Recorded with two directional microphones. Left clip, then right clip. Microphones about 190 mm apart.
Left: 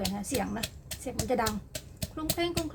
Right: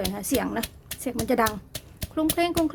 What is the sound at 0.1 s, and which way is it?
Speech, 65° right (ahead or behind).